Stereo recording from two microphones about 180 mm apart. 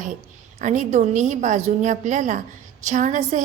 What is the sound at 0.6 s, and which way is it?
A woman's voice, 40° right (ahead or behind).